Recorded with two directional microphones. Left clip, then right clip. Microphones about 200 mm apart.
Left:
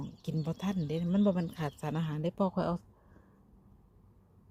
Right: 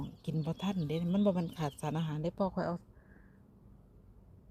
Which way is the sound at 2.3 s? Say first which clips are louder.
Left 3 dB; 15° left (ahead or behind).